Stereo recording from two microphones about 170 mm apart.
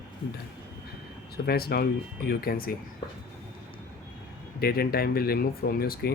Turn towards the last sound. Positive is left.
turn(degrees=65)  # may be behind; listen again after turning